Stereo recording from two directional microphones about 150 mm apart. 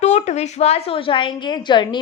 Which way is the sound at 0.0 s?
50° left (ahead or behind).